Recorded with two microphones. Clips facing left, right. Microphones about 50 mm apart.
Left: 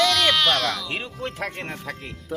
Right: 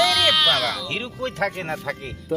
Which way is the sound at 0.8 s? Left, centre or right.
Centre.